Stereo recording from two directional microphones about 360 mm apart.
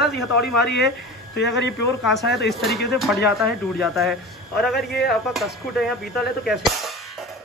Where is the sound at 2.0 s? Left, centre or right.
Centre.